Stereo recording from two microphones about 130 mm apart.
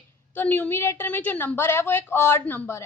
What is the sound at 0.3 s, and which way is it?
A woman's voice, 15° left (ahead or behind).